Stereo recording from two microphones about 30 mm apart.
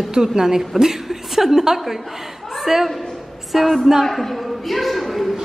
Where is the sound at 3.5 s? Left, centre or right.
Centre.